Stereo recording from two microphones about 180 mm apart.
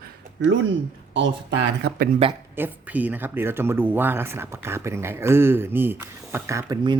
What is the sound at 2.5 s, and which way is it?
Speech, 10° right (ahead or behind).